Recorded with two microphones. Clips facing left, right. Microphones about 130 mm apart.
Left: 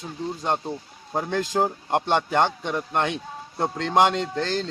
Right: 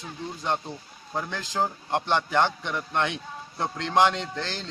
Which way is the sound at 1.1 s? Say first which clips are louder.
Left 5 dB; 45° left (ahead or behind).